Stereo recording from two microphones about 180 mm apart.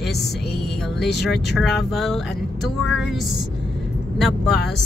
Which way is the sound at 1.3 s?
Centre (ahead or behind).